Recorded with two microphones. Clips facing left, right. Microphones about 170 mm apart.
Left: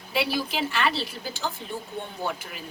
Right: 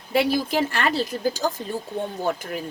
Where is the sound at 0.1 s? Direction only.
50° right (ahead or behind).